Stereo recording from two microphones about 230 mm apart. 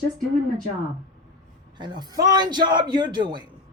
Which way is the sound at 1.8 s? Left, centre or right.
Centre.